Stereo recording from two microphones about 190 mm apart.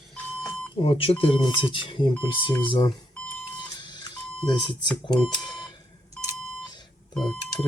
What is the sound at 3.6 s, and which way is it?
Alarm, 25° left (ahead or behind).